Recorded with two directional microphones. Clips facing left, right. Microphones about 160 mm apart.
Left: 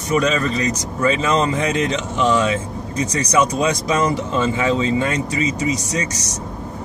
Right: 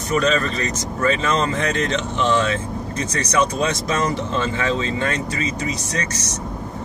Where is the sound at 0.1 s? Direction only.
10° left (ahead or behind).